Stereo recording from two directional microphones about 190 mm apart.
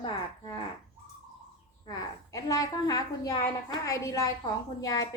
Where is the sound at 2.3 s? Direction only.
20° left (ahead or behind).